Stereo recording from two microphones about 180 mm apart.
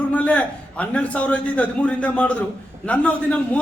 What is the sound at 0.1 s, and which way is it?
A man's voice, 5° left (ahead or behind).